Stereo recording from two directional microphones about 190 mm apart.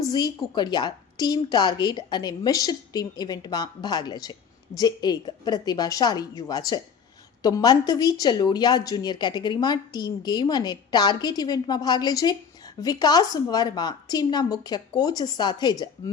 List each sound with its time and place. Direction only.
0.1 s speech: 20° left (ahead or behind)